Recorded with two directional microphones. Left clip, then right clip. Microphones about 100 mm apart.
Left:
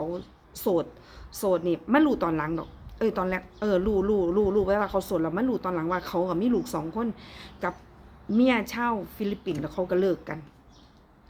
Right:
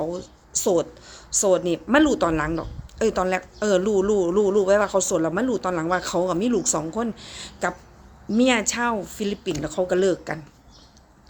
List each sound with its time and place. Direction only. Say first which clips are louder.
0.0 s speech: right 4 dB; 15° right (ahead or behind)